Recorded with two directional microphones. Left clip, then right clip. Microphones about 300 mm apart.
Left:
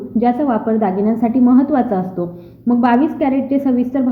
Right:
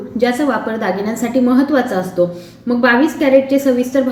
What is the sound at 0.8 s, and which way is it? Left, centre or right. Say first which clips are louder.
A woman's voice: left 2 dB; left.